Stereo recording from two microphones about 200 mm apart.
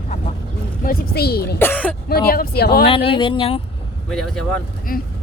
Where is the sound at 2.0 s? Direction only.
50° left (ahead or behind).